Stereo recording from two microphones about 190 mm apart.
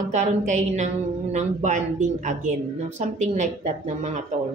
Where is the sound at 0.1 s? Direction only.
40° right (ahead or behind).